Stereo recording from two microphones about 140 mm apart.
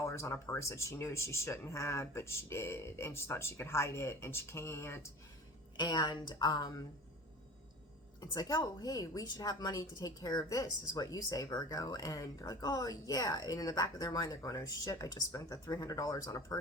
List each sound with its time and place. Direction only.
0.0 s speech: 20° left (ahead or behind)
5.7 s a woman's voice: 30° left (ahead or behind)
8.2 s a woman's voice: 30° left (ahead or behind)